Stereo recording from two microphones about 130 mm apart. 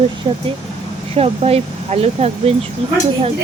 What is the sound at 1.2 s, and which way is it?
Speech, 50° right (ahead or behind).